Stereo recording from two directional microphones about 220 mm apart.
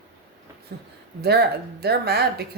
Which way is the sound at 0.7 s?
45° right (ahead or behind).